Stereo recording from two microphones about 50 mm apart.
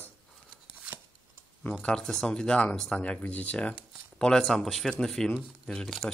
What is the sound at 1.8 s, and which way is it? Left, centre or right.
Speech, centre.